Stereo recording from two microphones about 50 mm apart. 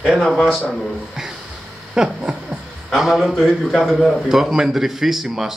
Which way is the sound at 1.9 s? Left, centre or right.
Centre.